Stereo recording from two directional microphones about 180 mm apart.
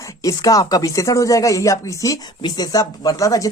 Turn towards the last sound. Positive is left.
turn(degrees=20)  # may be behind; listen again after turning